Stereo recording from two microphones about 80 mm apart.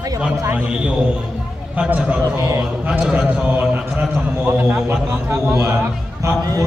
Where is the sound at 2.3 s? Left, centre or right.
Right.